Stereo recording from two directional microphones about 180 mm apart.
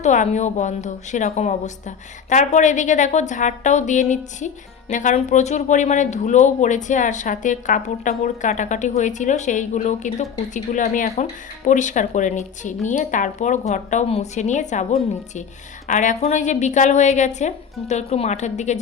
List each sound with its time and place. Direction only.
0.0 s a woman's voice: 40° left (ahead or behind)